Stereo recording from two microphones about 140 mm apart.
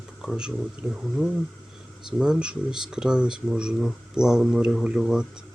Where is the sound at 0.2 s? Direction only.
5° right (ahead or behind).